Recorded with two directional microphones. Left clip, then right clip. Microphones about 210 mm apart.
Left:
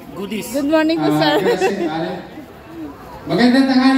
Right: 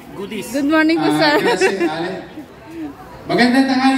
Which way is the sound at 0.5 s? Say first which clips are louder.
Right 1 dB; 15° right (ahead or behind).